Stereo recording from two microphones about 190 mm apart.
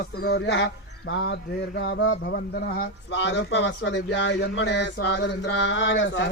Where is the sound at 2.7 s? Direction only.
70° left (ahead or behind).